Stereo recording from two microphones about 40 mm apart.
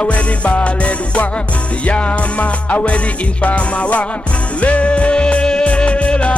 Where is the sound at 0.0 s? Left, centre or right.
Left.